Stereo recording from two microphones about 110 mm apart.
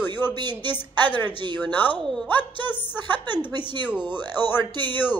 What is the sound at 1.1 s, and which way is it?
Speech, 20° left (ahead or behind).